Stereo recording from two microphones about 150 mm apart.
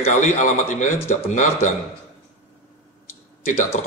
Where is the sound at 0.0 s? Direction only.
55° left (ahead or behind).